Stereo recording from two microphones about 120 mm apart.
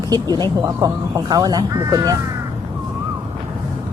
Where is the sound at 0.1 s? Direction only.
35° right (ahead or behind).